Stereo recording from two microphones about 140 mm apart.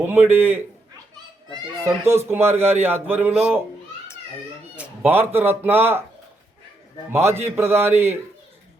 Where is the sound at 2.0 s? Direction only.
15° right (ahead or behind).